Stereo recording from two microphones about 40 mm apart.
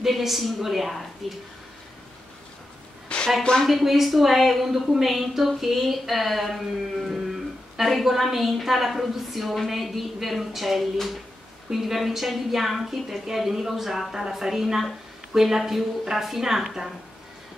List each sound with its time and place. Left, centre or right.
0.0 s a woman's voice: centre
3.1 s a sound: left
3.6 s a woman's voice: centre